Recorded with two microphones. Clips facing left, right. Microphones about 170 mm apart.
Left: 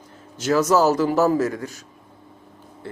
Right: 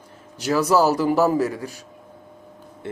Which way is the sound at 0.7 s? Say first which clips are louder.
Right 1 dB; 10° right (ahead or behind).